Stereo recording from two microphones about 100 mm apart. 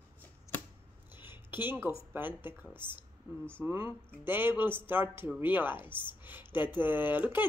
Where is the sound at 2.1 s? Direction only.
20° right (ahead or behind).